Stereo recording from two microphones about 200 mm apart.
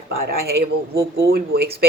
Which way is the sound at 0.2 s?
50° right (ahead or behind).